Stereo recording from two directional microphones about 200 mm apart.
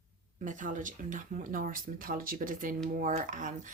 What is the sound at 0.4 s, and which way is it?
Speech, 40° right (ahead or behind).